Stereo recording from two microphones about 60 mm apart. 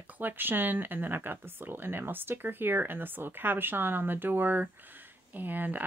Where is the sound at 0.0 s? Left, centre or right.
Right.